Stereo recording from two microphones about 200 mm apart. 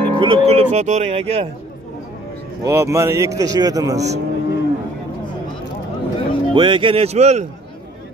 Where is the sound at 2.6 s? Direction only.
15° right (ahead or behind).